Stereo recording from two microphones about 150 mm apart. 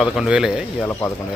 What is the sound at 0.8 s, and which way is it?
Speech, 15° left (ahead or behind).